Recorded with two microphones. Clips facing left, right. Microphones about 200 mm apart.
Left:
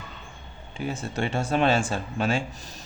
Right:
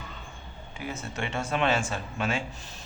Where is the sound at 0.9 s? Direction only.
35° left (ahead or behind).